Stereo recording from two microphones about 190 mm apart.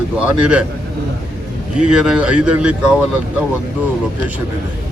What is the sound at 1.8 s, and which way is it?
Speech, 5° right (ahead or behind).